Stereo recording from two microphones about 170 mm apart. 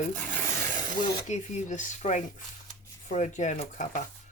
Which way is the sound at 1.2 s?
45° left (ahead or behind).